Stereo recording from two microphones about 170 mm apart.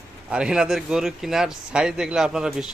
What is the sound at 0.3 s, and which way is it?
Speech, 5° right (ahead or behind).